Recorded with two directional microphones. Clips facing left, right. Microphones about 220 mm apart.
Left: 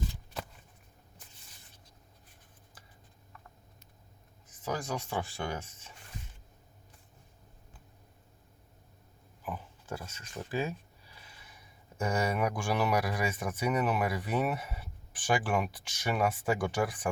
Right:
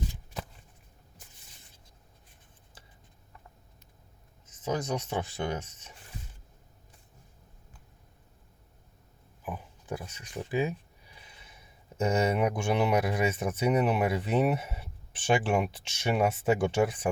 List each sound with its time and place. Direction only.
2.8 s a sound: 25° right (ahead or behind)
4.4 s speech: 20° right (ahead or behind)
9.4 s speech: 15° right (ahead or behind)